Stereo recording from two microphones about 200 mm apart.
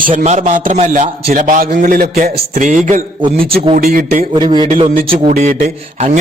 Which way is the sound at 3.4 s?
50° right (ahead or behind).